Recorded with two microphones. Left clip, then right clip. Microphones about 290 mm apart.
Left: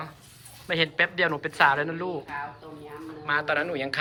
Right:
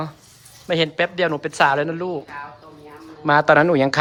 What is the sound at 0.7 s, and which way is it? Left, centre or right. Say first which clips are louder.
Speech: right 4 dB; centre.